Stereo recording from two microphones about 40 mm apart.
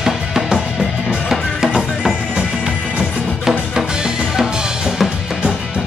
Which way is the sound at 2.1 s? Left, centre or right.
Right.